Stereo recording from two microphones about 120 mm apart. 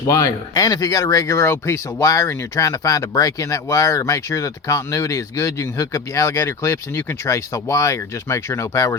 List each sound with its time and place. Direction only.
0.1 s speech: 35° left (ahead or behind)